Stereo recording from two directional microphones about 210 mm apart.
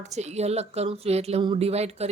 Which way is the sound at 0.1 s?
30° right (ahead or behind).